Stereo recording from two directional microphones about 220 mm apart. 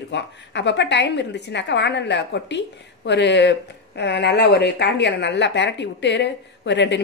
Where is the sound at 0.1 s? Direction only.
50° left (ahead or behind).